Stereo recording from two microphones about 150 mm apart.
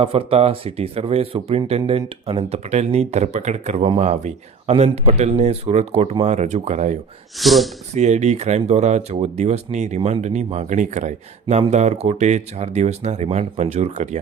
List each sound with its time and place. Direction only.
0.0 s speech: 40° right (ahead or behind)
7.3 s speech: centre (ahead or behind)
7.9 s speech: 50° right (ahead or behind)